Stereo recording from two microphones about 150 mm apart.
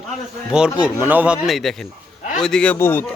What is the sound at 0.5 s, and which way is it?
A man's voice, 5° right (ahead or behind).